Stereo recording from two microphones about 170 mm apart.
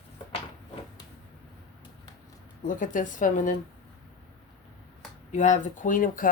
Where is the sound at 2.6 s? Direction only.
50° left (ahead or behind).